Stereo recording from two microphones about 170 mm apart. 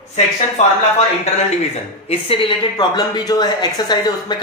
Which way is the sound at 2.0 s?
30° left (ahead or behind).